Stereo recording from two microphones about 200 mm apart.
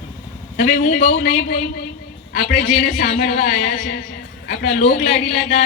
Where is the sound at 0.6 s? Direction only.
40° left (ahead or behind).